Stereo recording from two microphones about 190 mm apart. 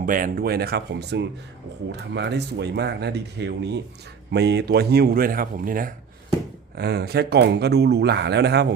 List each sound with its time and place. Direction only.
0.0 s speech: 45° right (ahead or behind)
6.7 s speech: 60° right (ahead or behind)